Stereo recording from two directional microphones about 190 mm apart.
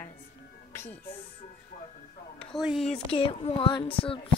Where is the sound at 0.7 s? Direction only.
10° left (ahead or behind).